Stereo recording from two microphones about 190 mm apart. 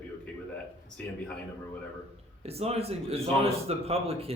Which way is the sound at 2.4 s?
30° right (ahead or behind).